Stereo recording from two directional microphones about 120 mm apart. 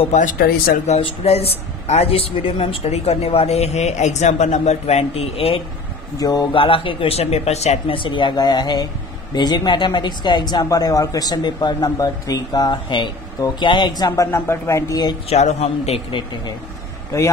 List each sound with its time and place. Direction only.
0.8 s a man's voice: 60° left (ahead or behind)
6.1 s speech: 30° left (ahead or behind)
6.5 s a man's voice: 45° left (ahead or behind); by 8.0 s 65° left (ahead or behind)
8.0 s speech: 45° left (ahead or behind)
15.2 s a man's voice: 65° left (ahead or behind)
16.1 s speech: 45° left (ahead or behind)
17.1 s speech: 25° left (ahead or behind)